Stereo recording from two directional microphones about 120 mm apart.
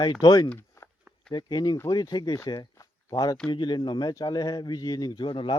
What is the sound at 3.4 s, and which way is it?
Speech, 40° left (ahead or behind).